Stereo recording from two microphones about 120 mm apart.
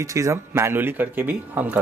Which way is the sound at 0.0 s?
25° right (ahead or behind).